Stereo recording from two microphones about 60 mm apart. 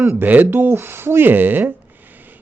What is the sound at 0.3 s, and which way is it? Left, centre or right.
Speech, right.